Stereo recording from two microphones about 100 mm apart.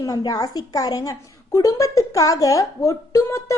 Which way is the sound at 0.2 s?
40° left (ahead or behind).